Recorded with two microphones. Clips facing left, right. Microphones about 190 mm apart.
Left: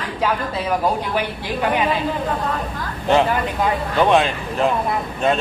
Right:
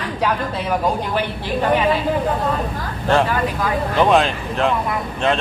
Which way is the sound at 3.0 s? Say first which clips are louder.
Even; 15° left (ahead or behind).